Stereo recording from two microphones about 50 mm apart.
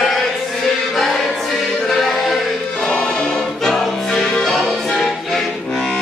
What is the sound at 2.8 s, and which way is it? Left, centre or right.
Music, centre.